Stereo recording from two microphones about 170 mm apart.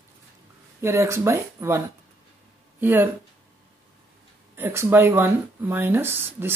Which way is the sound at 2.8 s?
10° right (ahead or behind).